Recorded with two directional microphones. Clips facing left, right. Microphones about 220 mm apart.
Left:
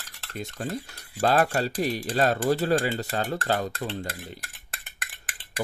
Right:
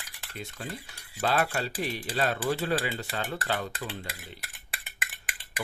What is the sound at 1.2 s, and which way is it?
Speech, 45° left (ahead or behind).